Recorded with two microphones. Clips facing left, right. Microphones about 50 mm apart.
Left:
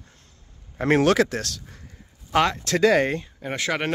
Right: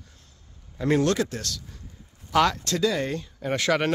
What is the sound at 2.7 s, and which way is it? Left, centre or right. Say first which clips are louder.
Speech: left 10 dB; left.